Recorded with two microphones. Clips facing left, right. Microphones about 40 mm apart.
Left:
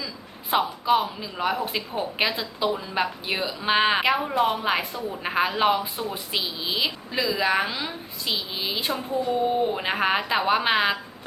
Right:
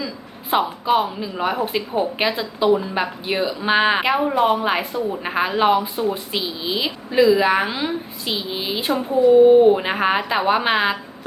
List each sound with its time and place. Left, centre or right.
0.5 s speech: centre
4.9 s a woman's voice: right
5.2 s speech: centre